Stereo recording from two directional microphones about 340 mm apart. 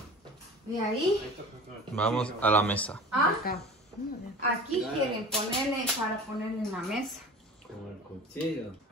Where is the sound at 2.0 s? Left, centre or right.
Centre.